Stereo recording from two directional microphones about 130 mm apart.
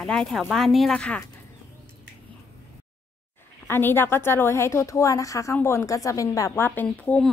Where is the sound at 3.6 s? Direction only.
15° left (ahead or behind).